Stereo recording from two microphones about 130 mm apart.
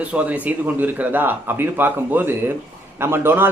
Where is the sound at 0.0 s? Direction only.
10° right (ahead or behind).